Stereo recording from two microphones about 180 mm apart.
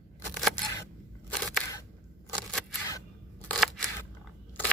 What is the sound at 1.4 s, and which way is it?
Single-lens reflex camera, centre (ahead or behind).